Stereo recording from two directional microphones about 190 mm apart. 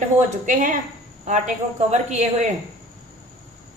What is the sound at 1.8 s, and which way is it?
Speech, 35° right (ahead or behind).